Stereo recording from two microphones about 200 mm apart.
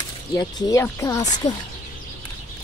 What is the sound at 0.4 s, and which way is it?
Speech, 20° left (ahead or behind).